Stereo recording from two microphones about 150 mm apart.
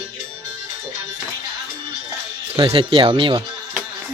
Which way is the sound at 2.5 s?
35° right (ahead or behind).